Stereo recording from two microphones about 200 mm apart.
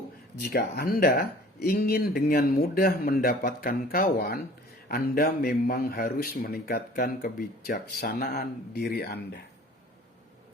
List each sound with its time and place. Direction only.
0.4 s speech: 50° left (ahead or behind)